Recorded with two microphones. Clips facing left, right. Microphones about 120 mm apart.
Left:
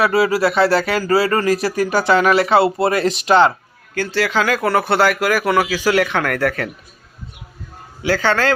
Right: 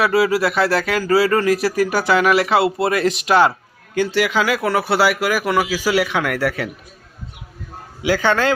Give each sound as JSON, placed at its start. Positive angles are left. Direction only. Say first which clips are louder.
{"t": 0.0, "sound": "speech", "louder": "left 1 dB", "side_deg": 0}
{"t": 3.9, "sound": "speech", "louder": "right 1 dB", "side_deg": -15}
{"t": 8.0, "sound": "speech", "louder": "even", "side_deg": -15}